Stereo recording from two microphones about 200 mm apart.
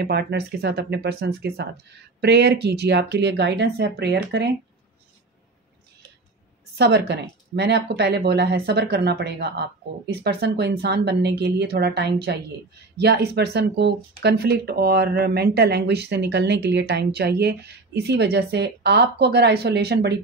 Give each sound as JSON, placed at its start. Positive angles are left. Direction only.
{"t": 0.0, "sound": "speech", "side_deg": -55}
{"t": 6.7, "sound": "speech", "side_deg": -55}